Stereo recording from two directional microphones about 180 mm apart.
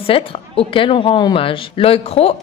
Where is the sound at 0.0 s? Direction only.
30° left (ahead or behind).